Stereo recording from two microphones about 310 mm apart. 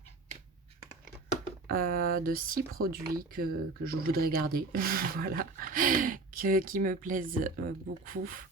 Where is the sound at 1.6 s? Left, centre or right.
Right.